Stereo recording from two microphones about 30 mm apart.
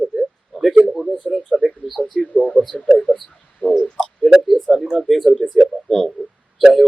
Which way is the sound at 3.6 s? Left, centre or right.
Left.